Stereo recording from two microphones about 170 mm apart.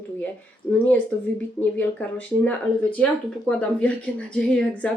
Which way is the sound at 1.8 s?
10° left (ahead or behind).